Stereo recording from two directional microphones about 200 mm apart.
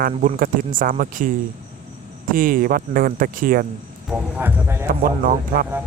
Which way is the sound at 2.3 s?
45° right (ahead or behind).